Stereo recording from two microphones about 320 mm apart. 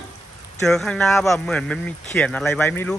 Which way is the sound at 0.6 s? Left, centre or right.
Centre.